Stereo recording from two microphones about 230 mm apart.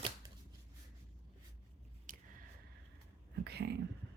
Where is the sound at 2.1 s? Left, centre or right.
Right.